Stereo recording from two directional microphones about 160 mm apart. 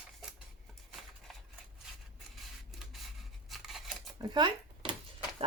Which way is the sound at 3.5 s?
Centre (ahead or behind).